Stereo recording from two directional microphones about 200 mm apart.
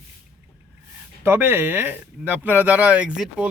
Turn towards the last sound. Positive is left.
turn(degrees=-5)  # may be behind; listen again after turning